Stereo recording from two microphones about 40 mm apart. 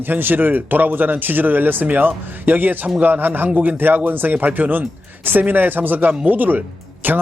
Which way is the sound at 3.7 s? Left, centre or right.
Right.